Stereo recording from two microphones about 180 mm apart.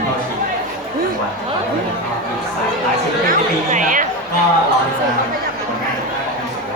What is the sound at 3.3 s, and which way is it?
Chatter, 45° right (ahead or behind).